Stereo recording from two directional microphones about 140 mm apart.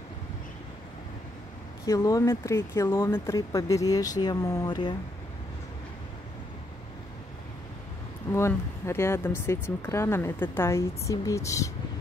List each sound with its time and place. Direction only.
1.9 s speech: 25° left (ahead or behind)
8.3 s speech: 20° left (ahead or behind)